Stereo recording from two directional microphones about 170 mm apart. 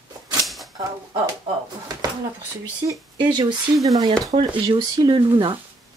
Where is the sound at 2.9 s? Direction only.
25° right (ahead or behind).